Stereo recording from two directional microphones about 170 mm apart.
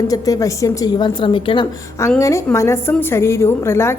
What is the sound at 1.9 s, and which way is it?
A woman's voice, 15° left (ahead or behind).